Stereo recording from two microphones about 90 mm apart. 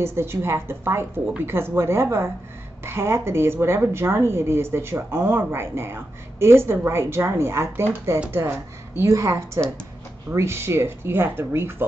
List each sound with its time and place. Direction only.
0.0 s a woman's voice: 25° right (ahead or behind)